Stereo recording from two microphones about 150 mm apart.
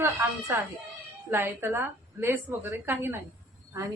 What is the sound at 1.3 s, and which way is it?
A woman's voice, 15° right (ahead or behind).